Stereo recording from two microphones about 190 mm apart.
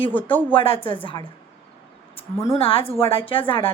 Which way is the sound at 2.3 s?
15° left (ahead or behind).